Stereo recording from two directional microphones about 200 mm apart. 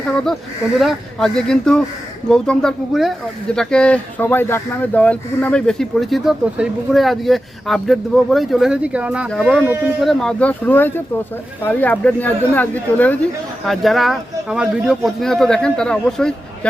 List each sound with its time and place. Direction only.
0.8 s speech: centre (ahead or behind)